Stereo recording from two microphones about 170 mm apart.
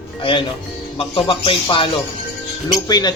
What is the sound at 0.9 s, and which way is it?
Speech, 30° left (ahead or behind).